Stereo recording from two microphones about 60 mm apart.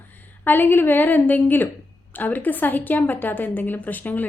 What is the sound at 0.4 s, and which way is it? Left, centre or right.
A woman's voice, left.